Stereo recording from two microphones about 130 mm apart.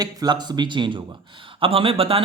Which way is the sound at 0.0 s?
30° right (ahead or behind).